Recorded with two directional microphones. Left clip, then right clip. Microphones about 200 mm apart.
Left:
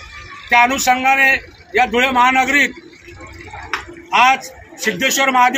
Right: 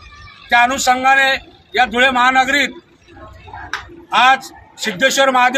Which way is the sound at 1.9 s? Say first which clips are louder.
Right 1 dB; 15° right (ahead or behind).